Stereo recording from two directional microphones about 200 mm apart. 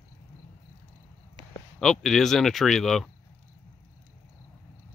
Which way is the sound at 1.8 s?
Centre (ahead or behind).